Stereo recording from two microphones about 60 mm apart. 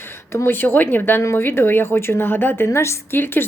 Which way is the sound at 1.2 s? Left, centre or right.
Left.